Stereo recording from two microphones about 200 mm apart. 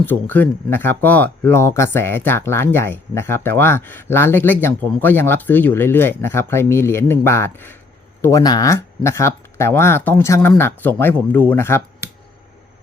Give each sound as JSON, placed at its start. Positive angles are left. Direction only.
{"t": 0.0, "sound": "speech", "side_deg": 10}